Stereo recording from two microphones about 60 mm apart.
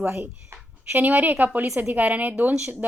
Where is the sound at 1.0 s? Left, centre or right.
Right.